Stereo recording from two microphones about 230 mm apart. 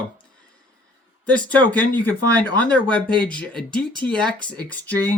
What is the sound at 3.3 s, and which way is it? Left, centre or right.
Speech, centre.